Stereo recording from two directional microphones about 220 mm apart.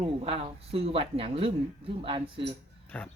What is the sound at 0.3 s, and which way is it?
Speech, 25° right (ahead or behind).